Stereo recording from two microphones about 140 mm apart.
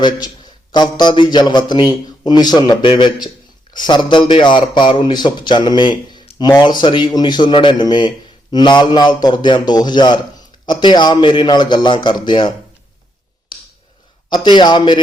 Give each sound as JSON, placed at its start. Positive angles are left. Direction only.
{"t": 0.0, "sound": "speech", "side_deg": 30}
{"t": 13.5, "sound": "a sound", "side_deg": 35}
{"t": 14.3, "sound": "speech", "side_deg": 30}